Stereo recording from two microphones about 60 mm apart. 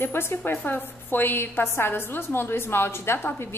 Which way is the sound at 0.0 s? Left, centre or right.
Left.